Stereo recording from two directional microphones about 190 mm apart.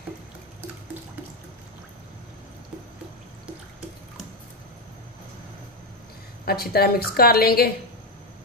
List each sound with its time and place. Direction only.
6.4 s a woman's voice: 55° left (ahead or behind)